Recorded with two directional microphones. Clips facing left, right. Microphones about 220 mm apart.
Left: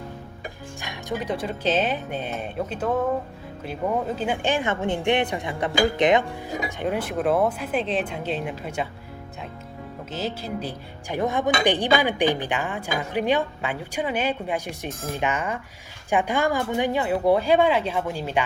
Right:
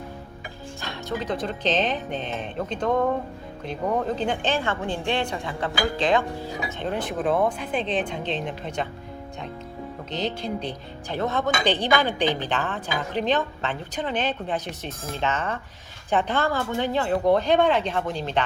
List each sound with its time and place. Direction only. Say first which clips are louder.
0.8 s speech: even; 15° left (ahead or behind)
6.7 s speech: left 2 dB; 10° left (ahead or behind)
10.1 s speech: right 1 dB; 5° left (ahead or behind)